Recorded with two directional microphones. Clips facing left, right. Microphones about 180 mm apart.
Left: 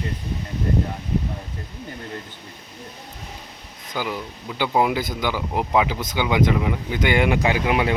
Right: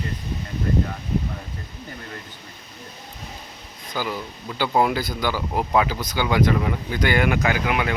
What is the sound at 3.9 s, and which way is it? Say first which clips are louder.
Speech: even; 15° left (ahead or behind).